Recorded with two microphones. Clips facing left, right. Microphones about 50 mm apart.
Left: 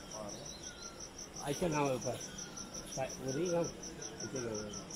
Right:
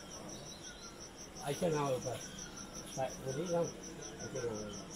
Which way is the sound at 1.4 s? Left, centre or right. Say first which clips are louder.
Left 1 dB; centre.